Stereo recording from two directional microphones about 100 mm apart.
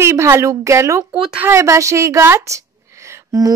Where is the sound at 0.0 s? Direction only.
30° right (ahead or behind).